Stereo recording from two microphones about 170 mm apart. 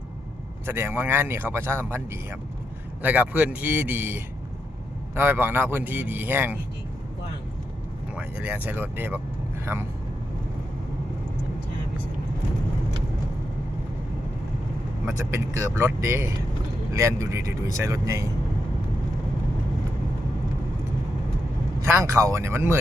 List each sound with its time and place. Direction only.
0.6 s speech: 15° right (ahead or behind)
8.1 s speech: 10° right (ahead or behind)
15.0 s speech: 15° right (ahead or behind)
21.8 s speech: 15° right (ahead or behind)